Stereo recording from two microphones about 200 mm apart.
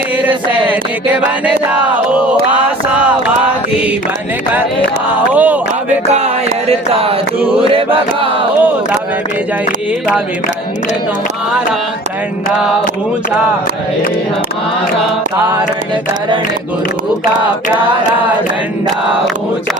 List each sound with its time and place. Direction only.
5.3 s speech: 10° right (ahead or behind)
6.1 s music: 30° right (ahead or behind)